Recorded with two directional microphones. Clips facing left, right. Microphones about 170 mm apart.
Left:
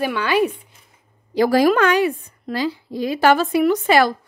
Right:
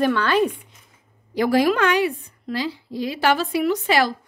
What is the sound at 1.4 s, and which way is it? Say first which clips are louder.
A woman's voice: left 3 dB; 40° left (ahead or behind).